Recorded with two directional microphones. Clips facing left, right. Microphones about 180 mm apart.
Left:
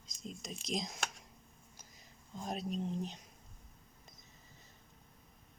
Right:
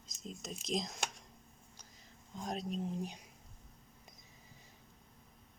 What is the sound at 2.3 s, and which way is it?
Speech, 5° left (ahead or behind).